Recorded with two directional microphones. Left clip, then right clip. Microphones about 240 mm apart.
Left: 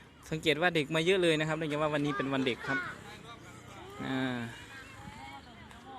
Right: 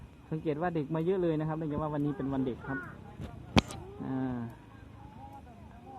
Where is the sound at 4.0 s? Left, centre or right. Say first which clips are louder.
Left 2 dB; left.